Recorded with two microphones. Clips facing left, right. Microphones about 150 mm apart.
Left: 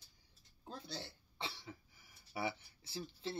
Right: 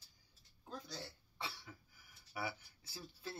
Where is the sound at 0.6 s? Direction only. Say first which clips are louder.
Left 1 dB; 30° left (ahead or behind).